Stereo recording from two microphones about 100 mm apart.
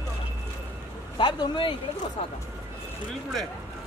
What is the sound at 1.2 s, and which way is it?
Speech, 55° left (ahead or behind).